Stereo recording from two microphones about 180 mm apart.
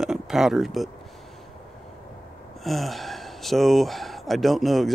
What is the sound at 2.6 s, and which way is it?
Speech, centre (ahead or behind).